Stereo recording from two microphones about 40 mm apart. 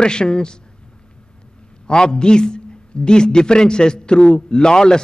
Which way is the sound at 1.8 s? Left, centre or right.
Centre.